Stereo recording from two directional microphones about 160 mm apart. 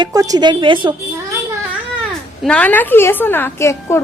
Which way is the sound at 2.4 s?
5° left (ahead or behind).